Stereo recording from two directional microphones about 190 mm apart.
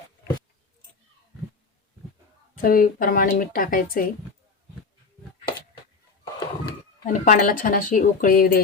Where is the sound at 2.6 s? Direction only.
50° left (ahead or behind).